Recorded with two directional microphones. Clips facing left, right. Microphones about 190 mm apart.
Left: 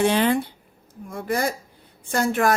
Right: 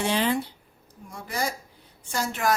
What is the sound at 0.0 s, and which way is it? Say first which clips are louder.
A woman's voice: left 5 dB; 55° left (ahead or behind).